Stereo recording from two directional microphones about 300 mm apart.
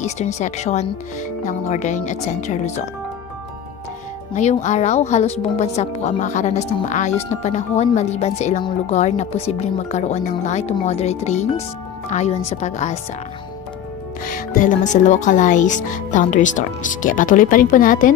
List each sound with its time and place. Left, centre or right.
0.0 s speech: left
4.3 s speech: left
14.2 s speech: left